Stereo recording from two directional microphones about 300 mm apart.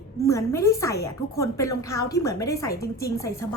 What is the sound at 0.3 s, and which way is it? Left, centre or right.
A woman's voice, centre.